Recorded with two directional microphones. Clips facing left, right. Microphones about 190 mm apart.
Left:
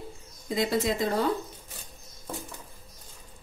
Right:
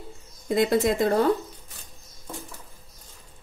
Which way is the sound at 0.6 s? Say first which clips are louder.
Right 5 dB; 55° right (ahead or behind).